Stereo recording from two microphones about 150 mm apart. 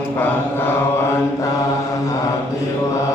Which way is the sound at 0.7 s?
15° left (ahead or behind).